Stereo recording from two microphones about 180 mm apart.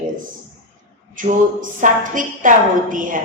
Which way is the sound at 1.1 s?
45° right (ahead or behind).